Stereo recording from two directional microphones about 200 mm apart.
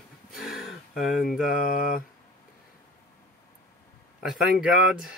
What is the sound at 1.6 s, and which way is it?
Speech, 45° left (ahead or behind).